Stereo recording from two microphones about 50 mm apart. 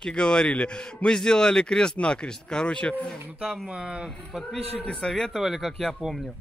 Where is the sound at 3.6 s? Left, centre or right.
Centre.